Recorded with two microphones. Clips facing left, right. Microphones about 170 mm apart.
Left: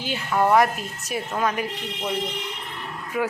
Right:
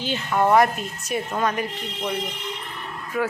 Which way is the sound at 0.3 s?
Centre (ahead or behind).